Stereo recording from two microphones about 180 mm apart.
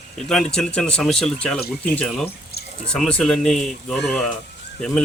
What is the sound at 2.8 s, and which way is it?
Speech, 5° left (ahead or behind).